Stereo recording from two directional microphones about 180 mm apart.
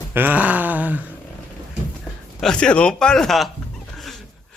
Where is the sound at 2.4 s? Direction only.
5° left (ahead or behind).